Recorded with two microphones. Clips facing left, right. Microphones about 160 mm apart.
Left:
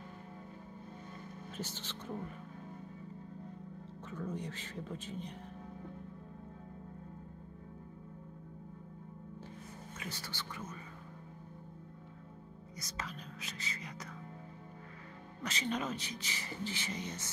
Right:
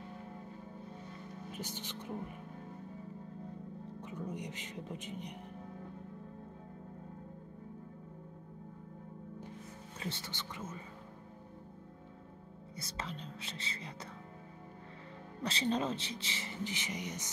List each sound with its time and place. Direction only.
1.5 s a man's voice: 15° right (ahead or behind)
4.0 s a man's voice: 15° right (ahead or behind)
9.9 s speech: 25° right (ahead or behind)
12.7 s speech: 30° right (ahead or behind)
15.4 s speech: 30° right (ahead or behind)